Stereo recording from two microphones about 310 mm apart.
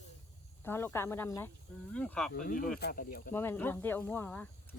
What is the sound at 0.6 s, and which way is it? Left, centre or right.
Speech, centre.